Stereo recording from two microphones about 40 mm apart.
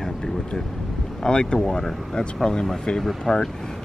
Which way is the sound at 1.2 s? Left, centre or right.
Left.